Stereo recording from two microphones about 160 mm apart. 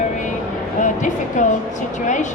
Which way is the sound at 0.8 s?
50° left (ahead or behind).